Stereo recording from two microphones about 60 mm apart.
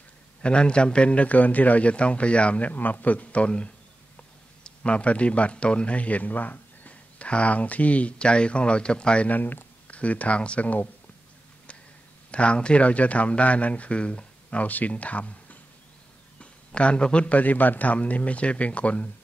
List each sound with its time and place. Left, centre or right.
0.4 s a man's voice: centre
9.4 s speech: left
9.8 s a man's voice: left
12.3 s a man's voice: centre